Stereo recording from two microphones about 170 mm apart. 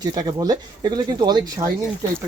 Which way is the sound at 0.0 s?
25° right (ahead or behind).